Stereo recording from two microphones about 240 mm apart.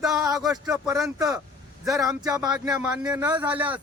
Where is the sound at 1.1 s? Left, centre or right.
Centre.